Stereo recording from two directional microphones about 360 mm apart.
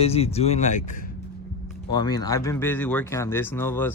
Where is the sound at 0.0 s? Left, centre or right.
Centre.